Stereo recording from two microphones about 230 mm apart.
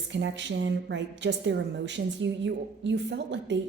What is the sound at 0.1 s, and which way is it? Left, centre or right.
A woman's voice, right.